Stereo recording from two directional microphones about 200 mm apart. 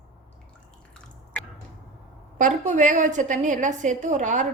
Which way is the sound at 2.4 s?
40° right (ahead or behind).